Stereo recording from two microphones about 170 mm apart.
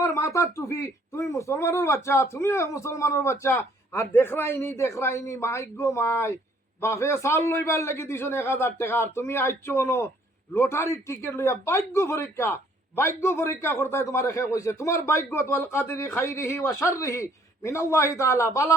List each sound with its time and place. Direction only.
0.0 s a man's voice: 15° left (ahead or behind)